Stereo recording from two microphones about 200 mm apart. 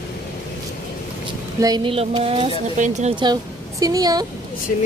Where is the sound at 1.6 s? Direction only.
20° right (ahead or behind).